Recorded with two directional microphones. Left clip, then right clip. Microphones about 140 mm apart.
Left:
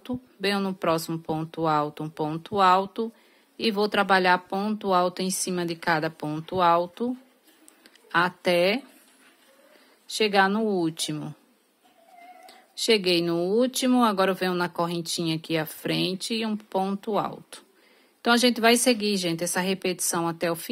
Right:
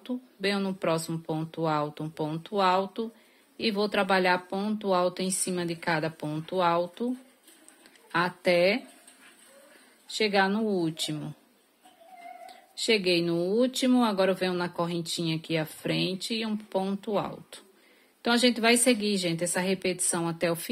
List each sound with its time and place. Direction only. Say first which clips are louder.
0.0 s speech: left 2 dB; 40° left (ahead or behind)
10.0 s speech: left 4 dB; 40° left (ahead or behind)
12.4 s speech: left 4 dB; 40° left (ahead or behind)